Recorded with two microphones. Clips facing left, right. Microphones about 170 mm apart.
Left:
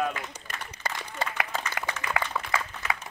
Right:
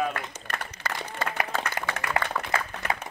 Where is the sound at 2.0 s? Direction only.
60° right (ahead or behind).